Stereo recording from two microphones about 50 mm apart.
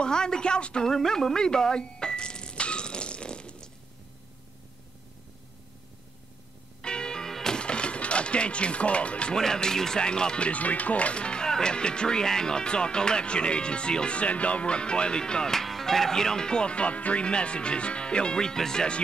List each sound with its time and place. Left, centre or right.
0.0 s speech: centre
0.8 s a sound: centre
6.8 s music: centre
9.4 s speech: centre